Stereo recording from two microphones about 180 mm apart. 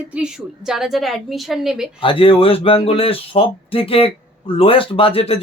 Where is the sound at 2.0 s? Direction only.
30° left (ahead or behind).